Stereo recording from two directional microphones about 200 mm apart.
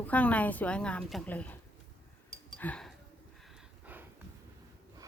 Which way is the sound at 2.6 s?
5° left (ahead or behind).